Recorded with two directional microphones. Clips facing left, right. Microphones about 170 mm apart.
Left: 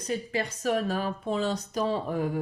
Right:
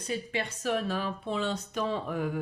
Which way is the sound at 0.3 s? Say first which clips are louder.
Left 3 dB; 40° left (ahead or behind).